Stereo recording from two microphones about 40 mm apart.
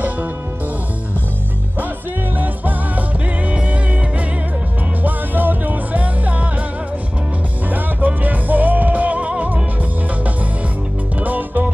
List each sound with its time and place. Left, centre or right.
2.3 s music: right
5.0 s music: right
7.7 s music: right
11.1 s music: right